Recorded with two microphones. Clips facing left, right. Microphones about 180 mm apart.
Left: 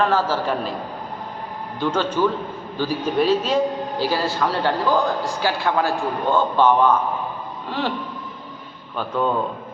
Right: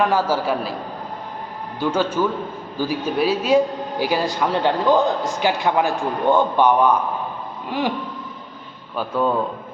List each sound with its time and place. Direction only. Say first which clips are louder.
0.0 s a man's voice: right 1 dB; 10° right (ahead or behind)
1.8 s a man's voice: even; 10° right (ahead or behind)
9.0 s a man's voice: right 1 dB; 5° right (ahead or behind)